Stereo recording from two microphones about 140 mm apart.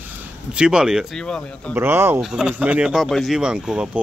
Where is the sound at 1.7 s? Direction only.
15° right (ahead or behind).